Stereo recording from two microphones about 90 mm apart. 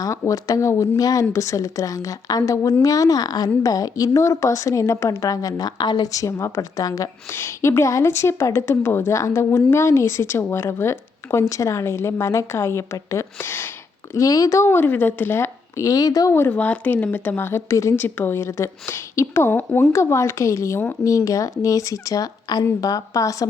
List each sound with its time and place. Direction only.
0.0 s a woman's voice: 40° left (ahead or behind)
6.1 s a woman's voice: 35° left (ahead or behind)
7.3 s a woman's voice: 30° left (ahead or behind)
14.1 s a woman's voice: 40° left (ahead or behind); by 15.4 s 20° left (ahead or behind)
15.8 s speech: 45° left (ahead or behind)
16.5 s a woman's voice: 15° left (ahead or behind); by 17.9 s 35° left (ahead or behind)
17.9 s a woman's voice: 20° left (ahead or behind)
19.9 s a woman's voice: 35° left (ahead or behind)